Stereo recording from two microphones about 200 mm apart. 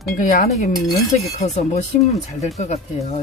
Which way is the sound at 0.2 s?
40° left (ahead or behind).